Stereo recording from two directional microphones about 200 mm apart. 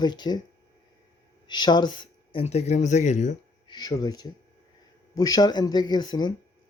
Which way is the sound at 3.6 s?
20° left (ahead or behind).